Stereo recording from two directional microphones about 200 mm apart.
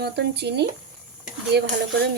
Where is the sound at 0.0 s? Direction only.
55° right (ahead or behind).